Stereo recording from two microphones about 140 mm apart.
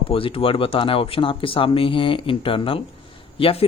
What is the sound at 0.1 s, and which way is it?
Speech, 40° left (ahead or behind).